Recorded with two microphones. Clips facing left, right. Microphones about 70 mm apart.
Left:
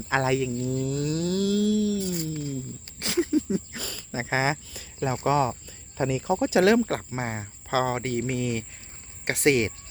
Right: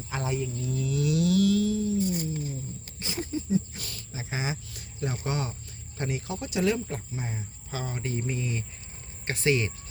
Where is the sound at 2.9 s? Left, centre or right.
Left.